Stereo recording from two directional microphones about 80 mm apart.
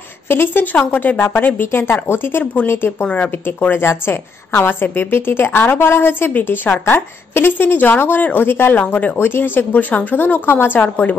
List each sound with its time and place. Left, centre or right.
0.3 s speech: left